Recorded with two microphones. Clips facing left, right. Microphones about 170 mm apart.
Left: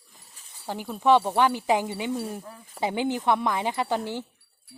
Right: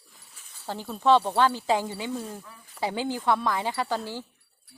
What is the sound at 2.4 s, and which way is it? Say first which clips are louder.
Speech: left 5 dB; 35° left (ahead or behind).